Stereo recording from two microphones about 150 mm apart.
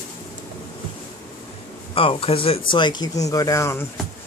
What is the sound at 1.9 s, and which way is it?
Speech, 40° left (ahead or behind).